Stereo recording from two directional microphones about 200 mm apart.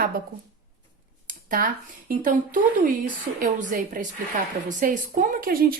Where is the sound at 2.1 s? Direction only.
40° right (ahead or behind).